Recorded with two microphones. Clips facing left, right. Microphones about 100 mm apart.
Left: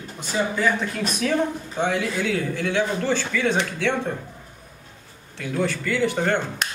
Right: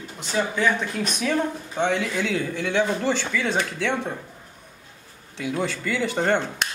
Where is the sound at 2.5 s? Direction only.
15° right (ahead or behind).